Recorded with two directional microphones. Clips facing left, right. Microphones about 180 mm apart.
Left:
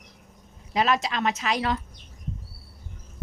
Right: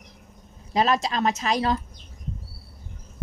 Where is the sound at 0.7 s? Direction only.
40° right (ahead or behind).